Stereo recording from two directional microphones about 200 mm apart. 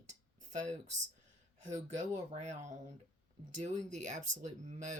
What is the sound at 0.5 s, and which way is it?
Speech, 35° right (ahead or behind).